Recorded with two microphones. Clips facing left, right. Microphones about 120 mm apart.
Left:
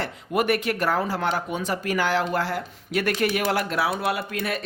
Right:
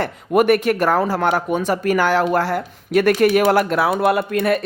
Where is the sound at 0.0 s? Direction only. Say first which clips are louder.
Right 8 dB; 55° right (ahead or behind).